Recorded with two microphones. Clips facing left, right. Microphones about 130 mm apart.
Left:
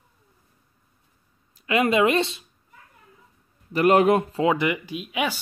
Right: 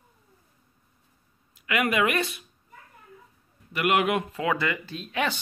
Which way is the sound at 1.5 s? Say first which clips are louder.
Left 5 dB; 25° left (ahead or behind).